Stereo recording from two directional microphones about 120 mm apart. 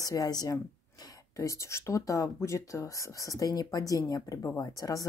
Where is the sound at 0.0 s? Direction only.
30° left (ahead or behind).